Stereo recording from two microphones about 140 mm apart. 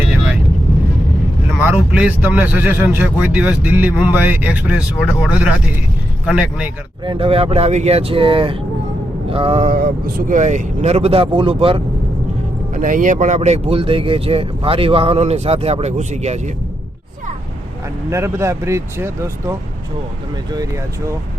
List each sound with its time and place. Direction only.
1.5 s speech: 10° right (ahead or behind)
7.0 s speech: 40° right (ahead or behind)
9.6 s speech: 85° right; by 11.8 s 40° right (ahead or behind)
12.7 s speech: 70° right (ahead or behind); by 16.4 s 50° right (ahead or behind)
18.1 s speech: 20° right (ahead or behind)